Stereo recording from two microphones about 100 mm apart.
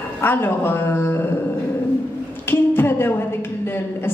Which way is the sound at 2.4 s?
25° left (ahead or behind).